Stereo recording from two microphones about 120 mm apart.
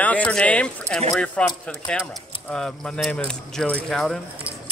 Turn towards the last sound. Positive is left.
turn(degrees=0)  # may be behind; listen again after turning